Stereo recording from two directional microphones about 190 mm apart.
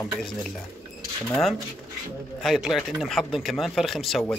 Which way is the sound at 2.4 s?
Centre (ahead or behind).